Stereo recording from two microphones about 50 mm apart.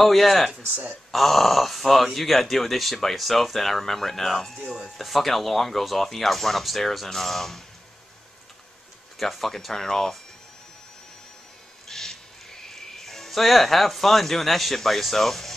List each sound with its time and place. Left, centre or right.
0.0 s speech: centre
9.2 s speech: centre
11.9 s owl: centre
12.6 s speech: centre